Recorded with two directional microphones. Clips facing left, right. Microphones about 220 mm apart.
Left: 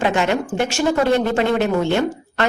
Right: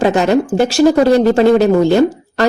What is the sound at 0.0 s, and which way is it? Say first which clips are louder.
Speech: right 7 dB; 40° right (ahead or behind).